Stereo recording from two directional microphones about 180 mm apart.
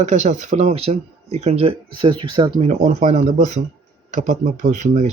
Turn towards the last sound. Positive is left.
turn(degrees=-40)  # may be behind; listen again after turning